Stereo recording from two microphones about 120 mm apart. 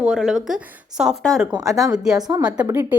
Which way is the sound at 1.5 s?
35° right (ahead or behind).